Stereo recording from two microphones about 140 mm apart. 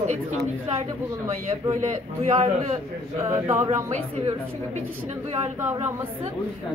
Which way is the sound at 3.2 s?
20° right (ahead or behind).